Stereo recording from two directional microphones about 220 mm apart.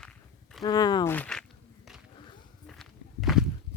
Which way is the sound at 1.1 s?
5° left (ahead or behind).